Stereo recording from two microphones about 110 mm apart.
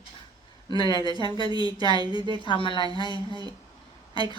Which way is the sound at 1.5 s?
40° right (ahead or behind).